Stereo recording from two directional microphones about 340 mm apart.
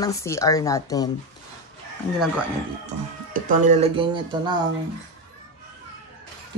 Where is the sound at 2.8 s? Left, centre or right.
Right.